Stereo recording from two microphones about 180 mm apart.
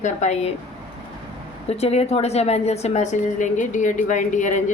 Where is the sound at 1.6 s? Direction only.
35° left (ahead or behind).